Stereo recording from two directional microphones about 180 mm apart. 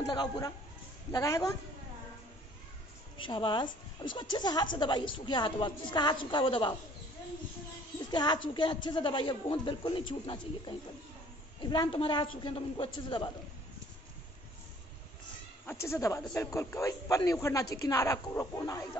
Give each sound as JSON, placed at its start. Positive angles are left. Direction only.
{"t": 0.1, "sound": "a woman's voice", "side_deg": 25}
{"t": 3.2, "sound": "a woman's voice", "side_deg": 25}
{"t": 8.1, "sound": "a woman's voice", "side_deg": 25}
{"t": 15.6, "sound": "a man's voice", "side_deg": 15}